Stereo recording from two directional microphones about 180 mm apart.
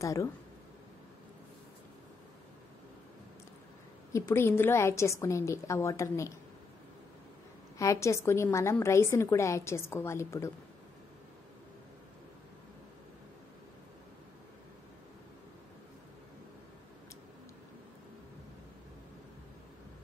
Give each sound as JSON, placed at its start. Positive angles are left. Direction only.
{"t": 0.0, "sound": "a woman's voice", "side_deg": 15}
{"t": 4.1, "sound": "a woman's voice", "side_deg": 15}
{"t": 7.7, "sound": "a woman's voice", "side_deg": 15}